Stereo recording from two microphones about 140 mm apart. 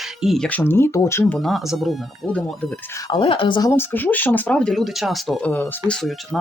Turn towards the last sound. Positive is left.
turn(degrees=0)  # may be behind; listen again after turning